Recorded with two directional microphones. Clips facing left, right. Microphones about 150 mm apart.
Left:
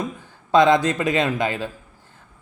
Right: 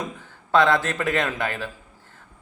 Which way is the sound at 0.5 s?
15° left (ahead or behind).